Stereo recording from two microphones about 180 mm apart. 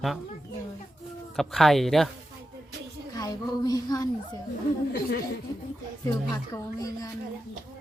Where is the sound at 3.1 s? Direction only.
20° left (ahead or behind).